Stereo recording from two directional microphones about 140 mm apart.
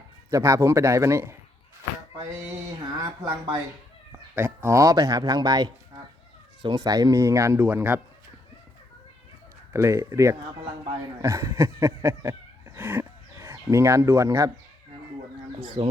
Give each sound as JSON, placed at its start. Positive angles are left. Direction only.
{"t": 0.3, "sound": "speech", "side_deg": -20}
{"t": 3.0, "sound": "speech", "side_deg": -20}
{"t": 9.7, "sound": "speech", "side_deg": -20}
{"t": 11.2, "sound": "cat", "side_deg": -20}
{"t": 15.6, "sound": "speech", "side_deg": -35}